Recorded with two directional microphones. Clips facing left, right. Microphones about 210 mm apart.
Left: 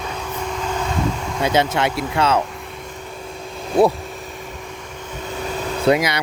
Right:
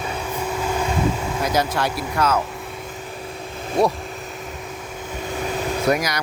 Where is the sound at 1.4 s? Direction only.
25° left (ahead or behind).